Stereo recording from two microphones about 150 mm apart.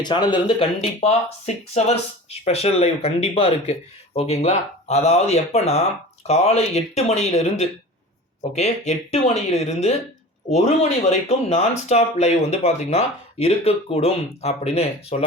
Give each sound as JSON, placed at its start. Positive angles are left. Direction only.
{"t": 0.0, "sound": "speech", "side_deg": 30}